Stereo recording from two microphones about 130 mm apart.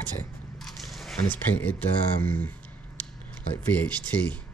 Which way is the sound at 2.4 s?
15° left (ahead or behind).